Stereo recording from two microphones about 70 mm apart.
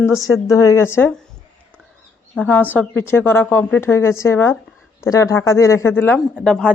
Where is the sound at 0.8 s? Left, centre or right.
Left.